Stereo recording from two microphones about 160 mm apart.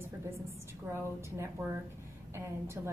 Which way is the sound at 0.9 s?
15° right (ahead or behind).